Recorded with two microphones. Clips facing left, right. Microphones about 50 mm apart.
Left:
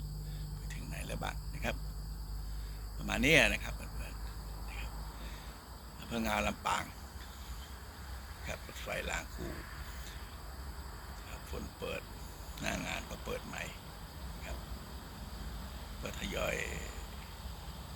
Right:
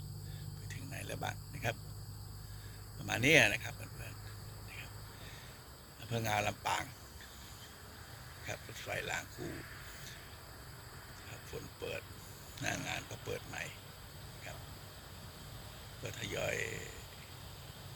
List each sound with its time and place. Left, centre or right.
0.7 s a sound: centre
3.1 s speech: centre
6.1 s speech: centre
8.4 s speech: centre
11.3 s speech: centre
12.5 s grunt: centre
13.0 s speech: left
16.0 s speech: centre